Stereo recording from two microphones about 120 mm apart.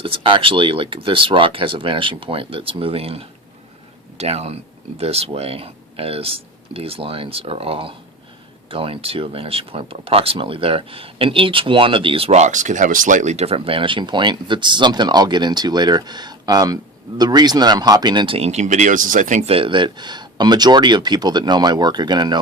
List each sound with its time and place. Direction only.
0.0 s speech: 45° right (ahead or behind)
18.3 s speech: 65° right (ahead or behind); by 19.5 s 85° right
19.5 s speech: 50° right (ahead or behind)